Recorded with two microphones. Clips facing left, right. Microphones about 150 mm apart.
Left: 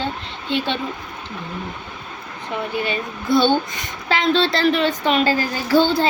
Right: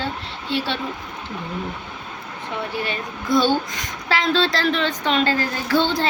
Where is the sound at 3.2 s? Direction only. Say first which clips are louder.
Left 2 dB; 25° left (ahead or behind).